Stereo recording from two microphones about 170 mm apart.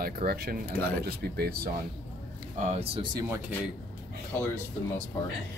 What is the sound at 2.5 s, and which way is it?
Speech, 40° right (ahead or behind).